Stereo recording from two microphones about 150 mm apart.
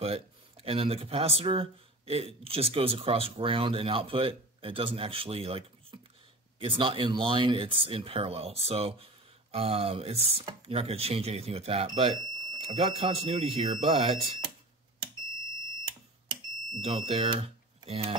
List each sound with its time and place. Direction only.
0.0 s speech: 40° right (ahead or behind)
16.8 s speech: 40° right (ahead or behind)